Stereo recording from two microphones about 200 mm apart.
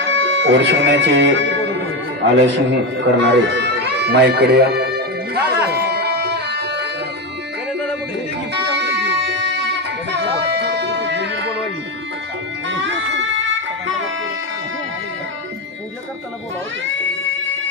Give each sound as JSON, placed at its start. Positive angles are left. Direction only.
{"t": 0.2, "sound": "a man's voice", "side_deg": -65}
{"t": 5.7, "sound": "music", "side_deg": -55}
{"t": 8.5, "sound": "music", "side_deg": -60}
{"t": 12.6, "sound": "music", "side_deg": -65}